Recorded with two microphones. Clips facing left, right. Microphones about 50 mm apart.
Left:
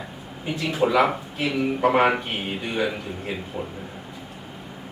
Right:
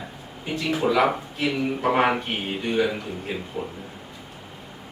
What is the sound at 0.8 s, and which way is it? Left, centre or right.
Speech, centre.